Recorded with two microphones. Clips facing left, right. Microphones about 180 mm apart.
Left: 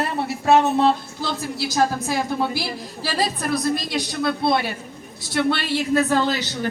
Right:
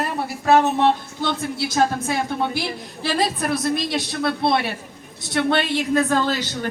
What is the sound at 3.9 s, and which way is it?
Speech, 25° right (ahead or behind).